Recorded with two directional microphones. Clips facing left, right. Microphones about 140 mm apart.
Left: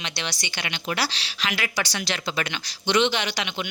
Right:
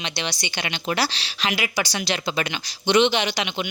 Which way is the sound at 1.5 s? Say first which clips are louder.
Right 2 dB; 10° right (ahead or behind).